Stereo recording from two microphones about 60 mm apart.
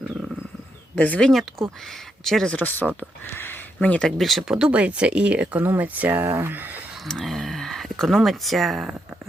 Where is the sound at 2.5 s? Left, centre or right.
Left.